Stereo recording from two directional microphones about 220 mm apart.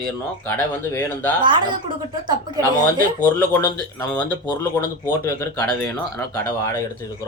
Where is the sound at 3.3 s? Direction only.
10° left (ahead or behind).